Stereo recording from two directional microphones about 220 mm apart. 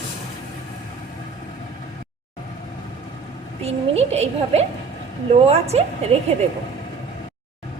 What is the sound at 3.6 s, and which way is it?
A woman's voice, 30° right (ahead or behind).